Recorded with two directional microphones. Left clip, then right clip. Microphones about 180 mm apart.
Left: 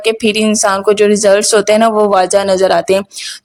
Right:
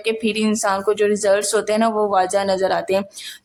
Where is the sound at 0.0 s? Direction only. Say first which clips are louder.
Left 8 dB; 40° left (ahead or behind).